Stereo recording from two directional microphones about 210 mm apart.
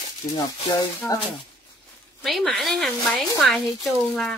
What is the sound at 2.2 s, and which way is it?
A woman's voice, centre (ahead or behind).